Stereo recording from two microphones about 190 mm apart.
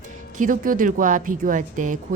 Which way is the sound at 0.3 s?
45° right (ahead or behind).